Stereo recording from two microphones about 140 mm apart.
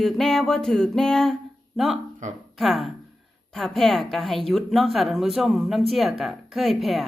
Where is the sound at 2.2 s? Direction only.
60° right (ahead or behind).